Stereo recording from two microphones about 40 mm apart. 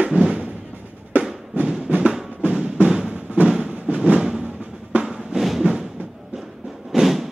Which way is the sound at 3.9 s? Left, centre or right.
Right.